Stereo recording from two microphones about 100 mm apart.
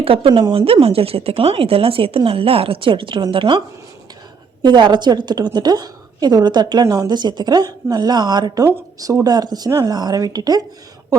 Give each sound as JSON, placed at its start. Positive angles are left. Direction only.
{"t": 0.0, "sound": "speech", "side_deg": -70}
{"t": 4.6, "sound": "a woman's voice", "side_deg": -50}
{"t": 6.8, "sound": "a woman's voice", "side_deg": -35}